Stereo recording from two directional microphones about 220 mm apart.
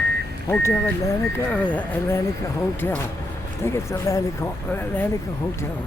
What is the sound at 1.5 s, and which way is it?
Speech, 5° left (ahead or behind).